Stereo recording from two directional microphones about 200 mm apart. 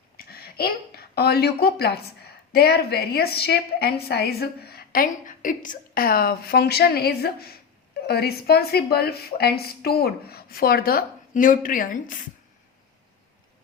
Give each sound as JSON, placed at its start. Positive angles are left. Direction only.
{"t": 0.3, "sound": "a woman's voice", "side_deg": 50}